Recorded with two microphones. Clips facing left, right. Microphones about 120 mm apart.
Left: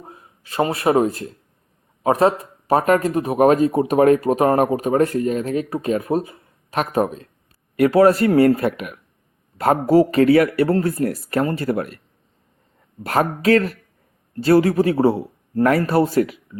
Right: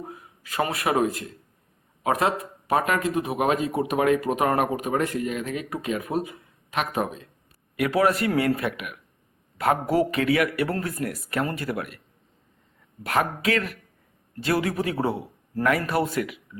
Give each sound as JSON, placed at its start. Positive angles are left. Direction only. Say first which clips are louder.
{"t": 0.0, "sound": "speech", "louder": "right 3 dB", "side_deg": 30}
{"t": 13.0, "sound": "speech", "louder": "left 5 dB", "side_deg": 35}